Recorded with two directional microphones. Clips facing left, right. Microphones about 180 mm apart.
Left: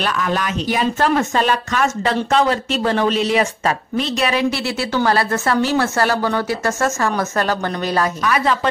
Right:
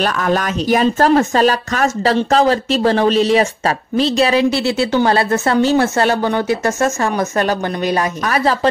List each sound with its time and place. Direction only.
0.0 s a woman's voice: 45° right (ahead or behind); by 8.1 s 15° right (ahead or behind)
8.2 s a woman's voice: 40° right (ahead or behind)